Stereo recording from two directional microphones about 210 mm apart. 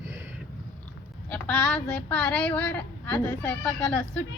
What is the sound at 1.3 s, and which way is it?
Speech, 5° left (ahead or behind).